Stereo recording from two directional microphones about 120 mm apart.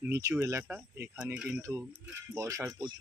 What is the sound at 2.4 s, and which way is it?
Speech, 25° right (ahead or behind).